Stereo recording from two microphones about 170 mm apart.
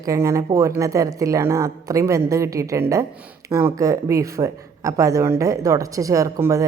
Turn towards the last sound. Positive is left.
turn(degrees=-20)  # may be behind; listen again after turning